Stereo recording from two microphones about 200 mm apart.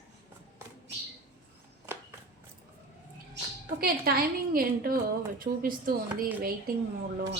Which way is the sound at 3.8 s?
45° right (ahead or behind).